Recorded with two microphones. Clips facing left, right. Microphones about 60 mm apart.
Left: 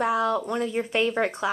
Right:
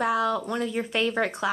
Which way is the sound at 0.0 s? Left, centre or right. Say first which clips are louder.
Left 1 dB; centre.